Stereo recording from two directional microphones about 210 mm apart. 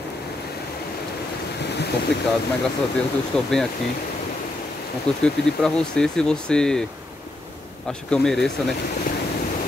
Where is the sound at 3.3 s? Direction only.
5° left (ahead or behind).